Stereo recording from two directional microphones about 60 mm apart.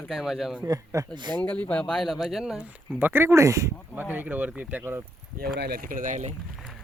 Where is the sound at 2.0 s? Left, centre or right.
Centre.